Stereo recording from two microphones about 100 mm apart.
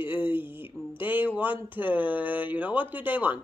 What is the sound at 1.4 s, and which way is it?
Speech, 20° right (ahead or behind).